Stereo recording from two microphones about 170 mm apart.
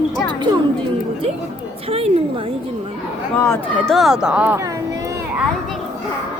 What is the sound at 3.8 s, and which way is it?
Speech, centre (ahead or behind).